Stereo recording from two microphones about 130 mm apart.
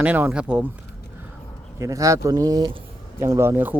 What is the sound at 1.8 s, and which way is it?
A man's voice, 25° right (ahead or behind).